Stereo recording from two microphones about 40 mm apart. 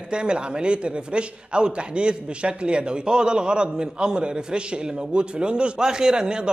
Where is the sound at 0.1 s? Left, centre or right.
Right.